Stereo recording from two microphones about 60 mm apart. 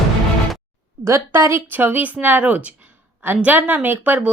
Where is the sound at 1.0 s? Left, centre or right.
Right.